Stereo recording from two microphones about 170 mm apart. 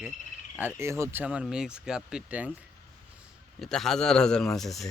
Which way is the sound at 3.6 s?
Centre (ahead or behind).